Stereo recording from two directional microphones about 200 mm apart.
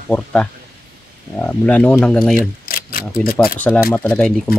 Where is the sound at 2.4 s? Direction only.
45° left (ahead or behind).